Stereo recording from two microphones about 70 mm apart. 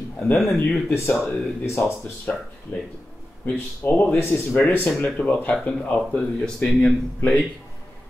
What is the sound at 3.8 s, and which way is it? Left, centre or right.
Speech, left.